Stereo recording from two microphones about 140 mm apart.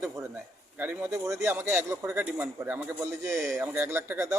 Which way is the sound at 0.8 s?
15° right (ahead or behind).